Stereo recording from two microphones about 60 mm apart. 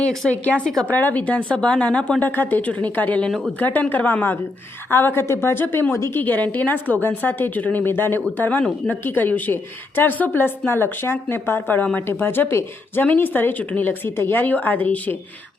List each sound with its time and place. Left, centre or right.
0.3 s a woman's voice: left
0.6 s a woman's voice: centre
0.9 s a woman's voice: left
1.5 s speech: centre
2.2 s a woman's voice: left
8.4 s a woman's voice: left